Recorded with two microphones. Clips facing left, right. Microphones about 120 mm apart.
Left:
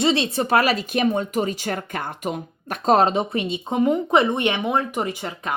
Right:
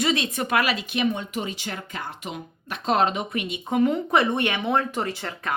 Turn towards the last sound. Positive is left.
turn(degrees=15)  # may be behind; listen again after turning